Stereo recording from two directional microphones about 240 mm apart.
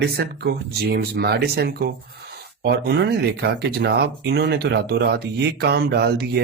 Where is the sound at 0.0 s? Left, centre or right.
Right.